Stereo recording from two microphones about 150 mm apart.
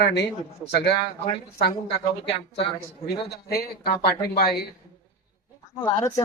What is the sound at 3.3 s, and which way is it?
Speech, 90° left.